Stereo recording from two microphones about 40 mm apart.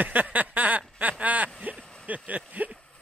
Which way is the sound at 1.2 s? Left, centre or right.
Right.